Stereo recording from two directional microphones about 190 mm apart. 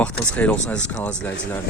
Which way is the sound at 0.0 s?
5° left (ahead or behind).